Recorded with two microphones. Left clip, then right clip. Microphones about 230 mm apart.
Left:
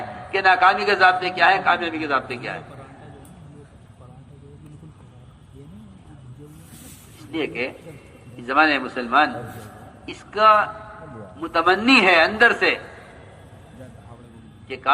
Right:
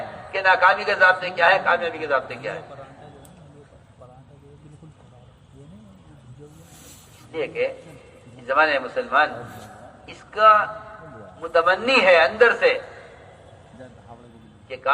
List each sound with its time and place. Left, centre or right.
0.3 s a man's voice: left
7.3 s a man's voice: left